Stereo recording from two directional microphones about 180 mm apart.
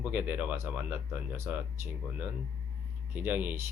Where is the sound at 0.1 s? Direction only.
10° right (ahead or behind).